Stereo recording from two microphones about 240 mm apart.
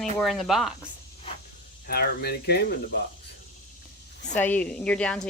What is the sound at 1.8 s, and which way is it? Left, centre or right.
Speech, left.